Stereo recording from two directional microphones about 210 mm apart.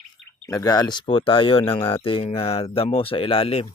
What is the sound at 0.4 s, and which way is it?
Speech, 15° left (ahead or behind).